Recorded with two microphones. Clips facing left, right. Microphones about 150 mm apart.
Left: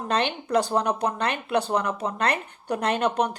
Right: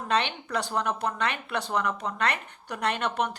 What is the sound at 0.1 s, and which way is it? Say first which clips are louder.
Speech: left 4 dB; 40° left (ahead or behind).